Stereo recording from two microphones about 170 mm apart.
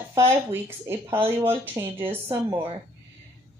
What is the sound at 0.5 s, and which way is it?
A woman's voice, 15° right (ahead or behind).